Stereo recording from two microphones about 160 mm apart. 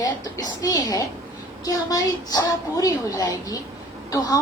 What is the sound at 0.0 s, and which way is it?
A woman's voice, 25° left (ahead or behind).